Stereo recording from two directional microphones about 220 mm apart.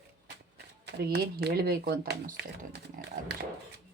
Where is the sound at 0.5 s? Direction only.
50° right (ahead or behind).